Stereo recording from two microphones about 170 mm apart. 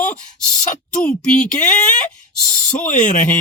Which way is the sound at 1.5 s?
45° left (ahead or behind).